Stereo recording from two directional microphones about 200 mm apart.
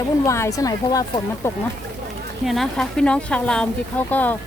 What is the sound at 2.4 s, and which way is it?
Speech, centre (ahead or behind).